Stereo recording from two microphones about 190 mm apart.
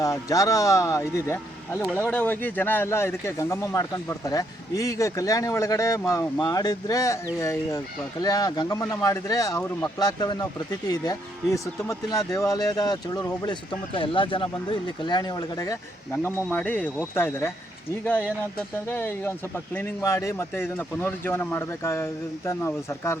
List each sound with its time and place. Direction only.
0.0 s speech: 20° left (ahead or behind)